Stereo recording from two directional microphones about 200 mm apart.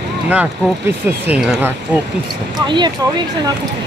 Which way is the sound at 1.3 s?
5° right (ahead or behind).